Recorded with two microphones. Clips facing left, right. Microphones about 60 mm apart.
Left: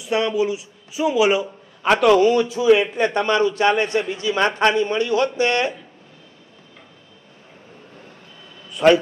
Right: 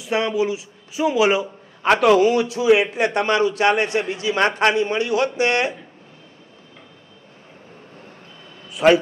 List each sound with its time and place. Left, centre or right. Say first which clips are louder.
0.0 s a man's voice: left 1 dB; right
2.0 s a man's voice: left 1 dB; centre
4.5 s a man's voice: left 1 dB; centre
4.7 s a man's voice: left 1 dB; centre
8.7 s a man's voice: even; centre